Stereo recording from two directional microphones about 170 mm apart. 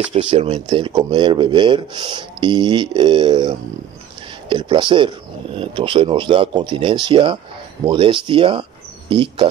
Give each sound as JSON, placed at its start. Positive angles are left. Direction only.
{"t": 0.1, "sound": "speech", "side_deg": -35}